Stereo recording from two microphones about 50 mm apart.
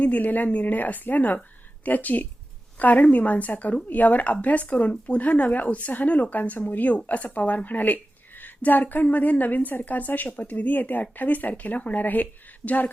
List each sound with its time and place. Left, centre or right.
0.0 s speech: left